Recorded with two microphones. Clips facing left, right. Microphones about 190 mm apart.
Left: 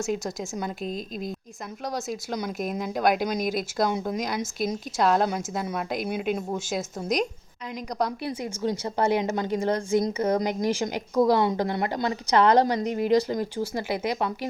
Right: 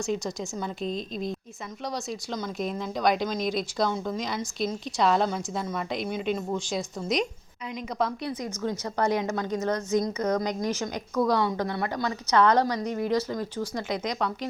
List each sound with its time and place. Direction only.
0.0 s a woman's voice: 5° left (ahead or behind)
8.4 s a woman's voice: 30° left (ahead or behind)
10.7 s speech: 10° left (ahead or behind)